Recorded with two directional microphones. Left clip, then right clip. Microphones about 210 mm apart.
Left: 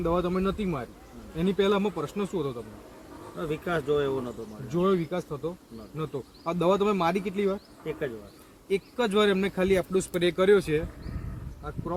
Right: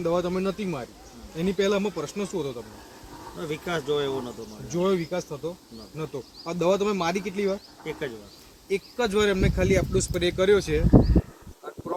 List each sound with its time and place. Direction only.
0.0 s insect: 15° left (ahead or behind)
3.3 s speech: centre (ahead or behind)
4.7 s insect: 15° left (ahead or behind)
7.9 s speech: centre (ahead or behind)
8.7 s speech: 20° left (ahead or behind)